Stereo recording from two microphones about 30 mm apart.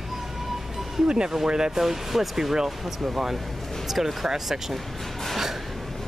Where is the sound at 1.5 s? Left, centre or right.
Right.